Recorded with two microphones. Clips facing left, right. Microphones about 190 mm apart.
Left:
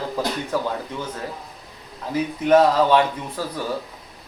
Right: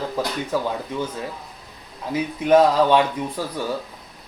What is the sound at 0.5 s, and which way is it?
Speech, 10° right (ahead or behind).